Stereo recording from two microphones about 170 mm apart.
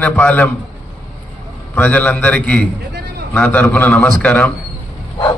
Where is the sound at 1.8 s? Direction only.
10° left (ahead or behind).